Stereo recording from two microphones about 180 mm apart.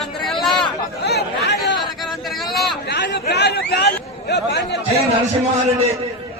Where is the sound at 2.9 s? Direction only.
70° left (ahead or behind).